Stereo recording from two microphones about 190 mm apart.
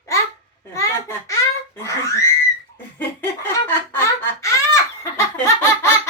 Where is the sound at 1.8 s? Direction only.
15° left (ahead or behind).